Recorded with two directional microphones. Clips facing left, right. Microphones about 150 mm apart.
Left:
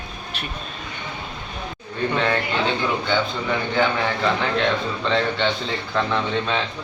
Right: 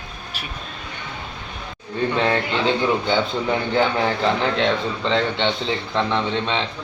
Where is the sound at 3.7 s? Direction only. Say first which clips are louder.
Right 1 dB; 30° right (ahead or behind).